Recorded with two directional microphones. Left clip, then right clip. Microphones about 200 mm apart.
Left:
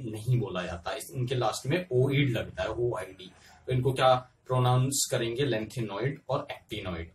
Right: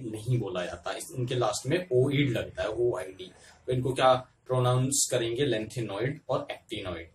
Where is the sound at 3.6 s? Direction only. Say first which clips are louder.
Right 1 dB; 5° right (ahead or behind).